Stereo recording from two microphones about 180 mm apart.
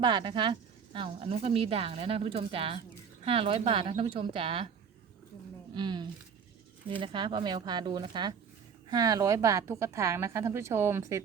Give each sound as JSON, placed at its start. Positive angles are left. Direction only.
{"t": 0.0, "sound": "a woman's voice", "side_deg": -25}
{"t": 5.7, "sound": "a woman's voice", "side_deg": -25}